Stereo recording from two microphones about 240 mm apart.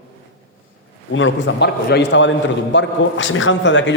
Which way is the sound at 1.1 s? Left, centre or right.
Left.